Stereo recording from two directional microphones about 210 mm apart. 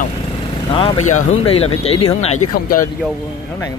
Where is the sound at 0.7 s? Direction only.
25° left (ahead or behind).